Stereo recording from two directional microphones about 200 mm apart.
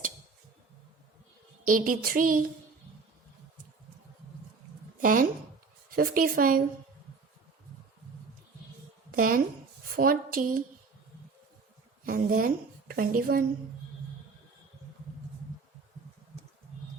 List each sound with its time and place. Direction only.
1.6 s a woman's voice: 40° right (ahead or behind)
4.9 s a woman's voice: 45° right (ahead or behind)
9.1 s a woman's voice: 45° right (ahead or behind)
12.0 s a woman's voice: 45° right (ahead or behind)